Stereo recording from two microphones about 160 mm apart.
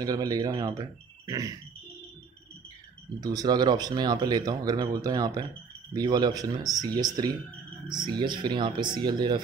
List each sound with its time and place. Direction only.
0.0 s speech: 20° right (ahead or behind)
3.2 s speech: 25° right (ahead or behind)